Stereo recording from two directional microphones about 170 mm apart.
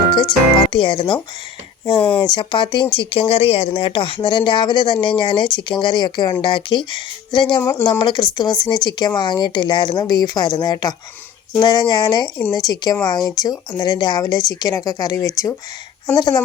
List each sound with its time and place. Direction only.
0.1 s speech: 30° left (ahead or behind)
7.6 s speech: 15° left (ahead or behind)